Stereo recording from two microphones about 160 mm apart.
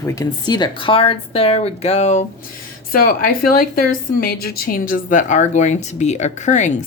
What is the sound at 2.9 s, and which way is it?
A woman's voice, 65° left (ahead or behind).